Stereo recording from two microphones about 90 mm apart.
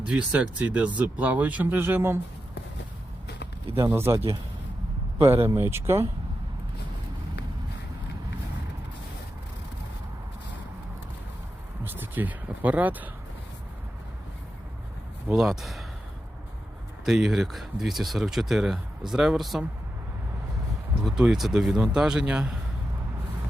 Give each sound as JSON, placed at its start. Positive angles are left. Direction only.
{"t": 0.1, "sound": "speech", "side_deg": -15}
{"t": 3.8, "sound": "speech", "side_deg": -30}
{"t": 5.2, "sound": "speech", "side_deg": -25}
{"t": 11.8, "sound": "speech", "side_deg": -25}
{"t": 15.3, "sound": "speech", "side_deg": -5}
{"t": 17.1, "sound": "speech", "side_deg": -5}
{"t": 21.0, "sound": "speech", "side_deg": -5}